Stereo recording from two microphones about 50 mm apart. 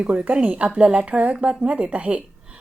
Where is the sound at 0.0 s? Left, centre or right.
Right.